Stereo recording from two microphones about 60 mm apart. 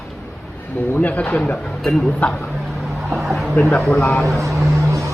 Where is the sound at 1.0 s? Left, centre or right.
Left.